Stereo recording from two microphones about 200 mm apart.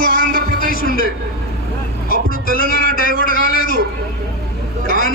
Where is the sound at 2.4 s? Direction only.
45° left (ahead or behind).